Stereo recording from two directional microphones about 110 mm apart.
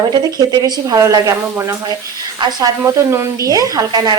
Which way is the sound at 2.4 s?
40° right (ahead or behind).